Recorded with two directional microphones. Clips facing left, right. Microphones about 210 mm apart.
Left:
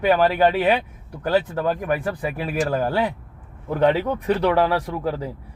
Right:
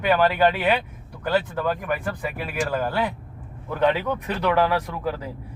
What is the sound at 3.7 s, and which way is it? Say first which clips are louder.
Speech: left 3 dB; 30° left (ahead or behind).